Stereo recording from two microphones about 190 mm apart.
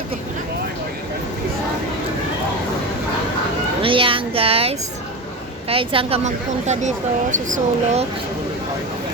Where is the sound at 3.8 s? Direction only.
30° right (ahead or behind).